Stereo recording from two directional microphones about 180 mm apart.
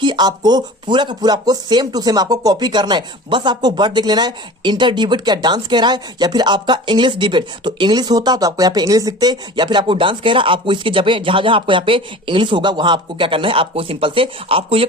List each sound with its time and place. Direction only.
0.0 s speech: 25° right (ahead or behind)